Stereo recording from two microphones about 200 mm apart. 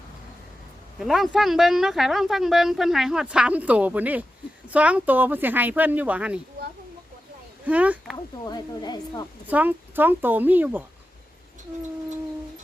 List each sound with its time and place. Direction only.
0.9 s speech: centre (ahead or behind)
7.6 s speech: 5° right (ahead or behind)
8.1 s speech: 20° left (ahead or behind)
9.5 s speech: 10° right (ahead or behind)